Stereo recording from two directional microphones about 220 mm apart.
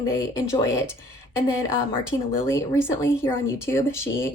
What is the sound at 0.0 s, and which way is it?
A woman's voice, 15° left (ahead or behind).